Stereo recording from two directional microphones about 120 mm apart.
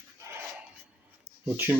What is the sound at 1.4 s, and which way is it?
Speech, 15° right (ahead or behind).